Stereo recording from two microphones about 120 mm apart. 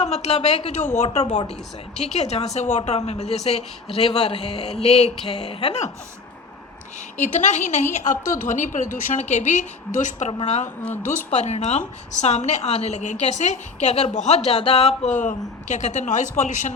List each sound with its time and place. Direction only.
0.0 s a woman's voice: 65° left (ahead or behind)
7.2 s a woman's voice: 90° left
10.4 s a woman's voice: 70° left (ahead or behind)
11.0 s a woman's voice: 85° left